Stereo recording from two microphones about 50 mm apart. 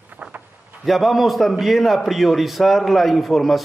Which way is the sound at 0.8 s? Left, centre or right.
Centre.